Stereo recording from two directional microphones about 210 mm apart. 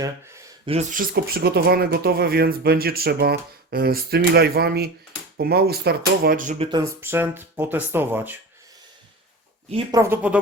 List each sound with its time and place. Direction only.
0.0 s a sound: 15° right (ahead or behind)
0.7 s speech: 35° right (ahead or behind)
6.7 s speech: 15° right (ahead or behind)
9.6 s speech: 25° right (ahead or behind)
10.0 s speech: 10° right (ahead or behind)